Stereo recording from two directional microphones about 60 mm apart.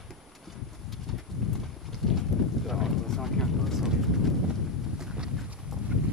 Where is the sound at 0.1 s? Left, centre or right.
Centre.